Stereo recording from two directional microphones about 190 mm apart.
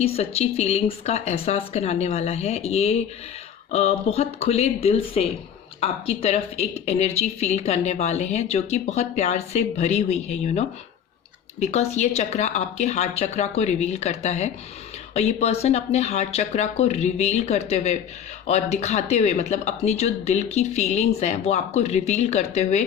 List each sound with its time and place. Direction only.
0.0 s speech: 30° left (ahead or behind)